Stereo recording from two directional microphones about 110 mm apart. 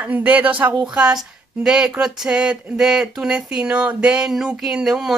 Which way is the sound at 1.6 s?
5° right (ahead or behind).